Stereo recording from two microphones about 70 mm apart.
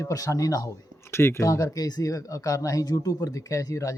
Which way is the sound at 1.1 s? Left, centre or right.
Left.